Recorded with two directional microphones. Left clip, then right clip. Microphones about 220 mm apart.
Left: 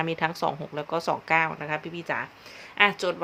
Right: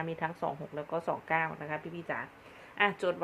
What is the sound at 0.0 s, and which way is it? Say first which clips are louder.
A woman's voice: left 8 dB; 25° left (ahead or behind).